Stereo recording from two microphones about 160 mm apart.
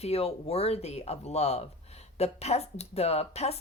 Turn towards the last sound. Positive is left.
turn(degrees=40)  # may be behind; listen again after turning